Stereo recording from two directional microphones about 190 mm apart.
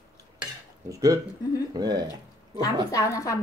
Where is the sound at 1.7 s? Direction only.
20° right (ahead or behind).